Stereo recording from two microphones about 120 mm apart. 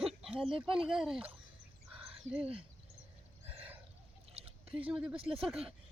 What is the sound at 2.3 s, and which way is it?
Speech, 55° right (ahead or behind).